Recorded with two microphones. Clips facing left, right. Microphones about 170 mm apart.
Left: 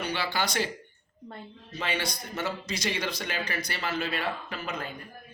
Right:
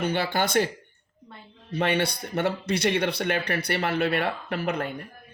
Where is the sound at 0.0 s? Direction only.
50° right (ahead or behind).